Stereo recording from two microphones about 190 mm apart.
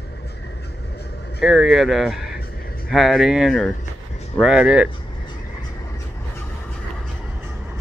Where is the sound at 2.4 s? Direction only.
50° left (ahead or behind).